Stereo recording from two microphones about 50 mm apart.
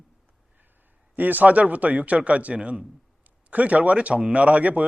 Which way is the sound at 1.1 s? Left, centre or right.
Right.